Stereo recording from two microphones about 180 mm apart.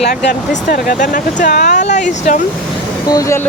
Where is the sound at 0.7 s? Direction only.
50° left (ahead or behind).